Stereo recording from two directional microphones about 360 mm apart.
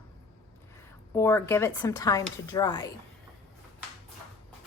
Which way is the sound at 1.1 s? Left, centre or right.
Centre.